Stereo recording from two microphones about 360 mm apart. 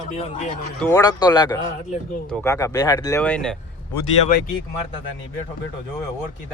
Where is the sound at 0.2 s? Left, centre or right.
Centre.